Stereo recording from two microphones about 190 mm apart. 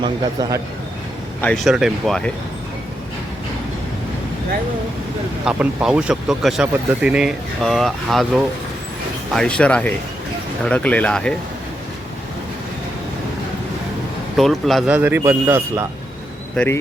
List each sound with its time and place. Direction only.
0.0 s a man's voice: 20° right (ahead or behind)
1.6 s speech: centre (ahead or behind)
5.5 s speech: 5° right (ahead or behind)
9.3 s speech: 5° left (ahead or behind)
14.3 s a man's voice: centre (ahead or behind)